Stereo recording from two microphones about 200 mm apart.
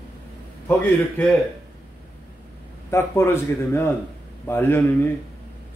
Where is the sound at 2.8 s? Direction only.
10° left (ahead or behind).